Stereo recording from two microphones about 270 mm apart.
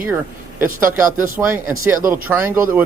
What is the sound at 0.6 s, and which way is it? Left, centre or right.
Speech, right.